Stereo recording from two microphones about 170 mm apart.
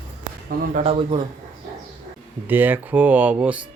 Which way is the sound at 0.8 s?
35° right (ahead or behind).